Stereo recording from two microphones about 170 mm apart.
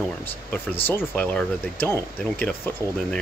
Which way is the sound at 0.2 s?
10° left (ahead or behind).